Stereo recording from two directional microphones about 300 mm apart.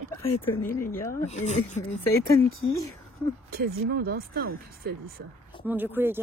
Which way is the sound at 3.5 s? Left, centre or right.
Right.